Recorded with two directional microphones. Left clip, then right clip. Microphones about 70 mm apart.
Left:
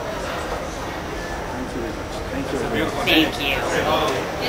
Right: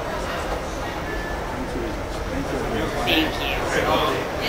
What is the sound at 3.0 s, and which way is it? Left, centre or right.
Speech, left.